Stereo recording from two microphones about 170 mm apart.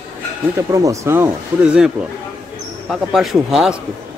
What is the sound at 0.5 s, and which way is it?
Speech, 20° right (ahead or behind).